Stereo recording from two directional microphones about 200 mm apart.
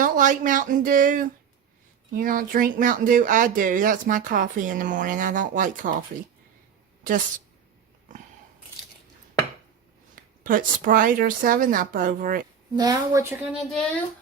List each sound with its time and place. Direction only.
0.0 s speech: 40° right (ahead or behind)
7.0 s a woman's voice: 40° right (ahead or behind)
10.4 s a woman's voice: 45° right (ahead or behind)
12.7 s a woman's voice: 20° right (ahead or behind)